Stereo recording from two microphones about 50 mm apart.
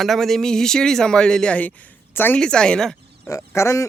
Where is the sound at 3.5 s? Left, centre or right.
Left.